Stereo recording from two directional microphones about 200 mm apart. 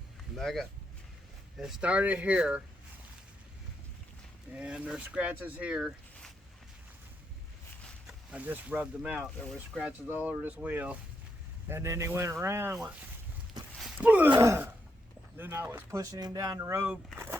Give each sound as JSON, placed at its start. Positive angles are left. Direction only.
{"t": 0.3, "sound": "speech", "side_deg": 0}
{"t": 4.5, "sound": "speech", "side_deg": -5}
{"t": 8.0, "sound": "speech", "side_deg": -5}
{"t": 10.2, "sound": "speech", "side_deg": -10}
{"t": 13.7, "sound": "a sound", "side_deg": -5}
{"t": 14.3, "sound": "speech", "side_deg": -25}
{"t": 15.4, "sound": "speech", "side_deg": -10}